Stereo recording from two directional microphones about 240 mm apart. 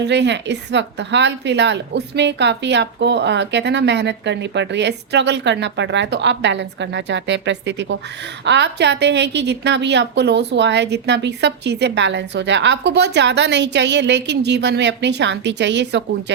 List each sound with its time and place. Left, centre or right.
0.0 s a woman's voice: right